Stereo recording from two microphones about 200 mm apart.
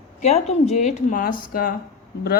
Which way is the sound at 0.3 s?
35° left (ahead or behind).